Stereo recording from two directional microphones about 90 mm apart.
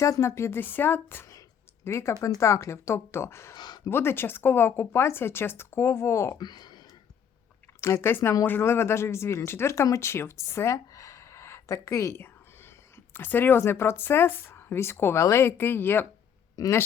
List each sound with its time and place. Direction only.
0.0 s speech: 35° left (ahead or behind)
3.5 s speech: 50° left (ahead or behind)
3.8 s speech: 25° left (ahead or behind)
6.4 s speech: 50° left (ahead or behind)
7.8 s speech: 30° left (ahead or behind)
16.6 s speech: 40° left (ahead or behind)